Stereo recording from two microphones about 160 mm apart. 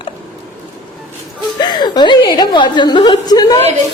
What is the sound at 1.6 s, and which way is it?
A woman's voice, 25° left (ahead or behind).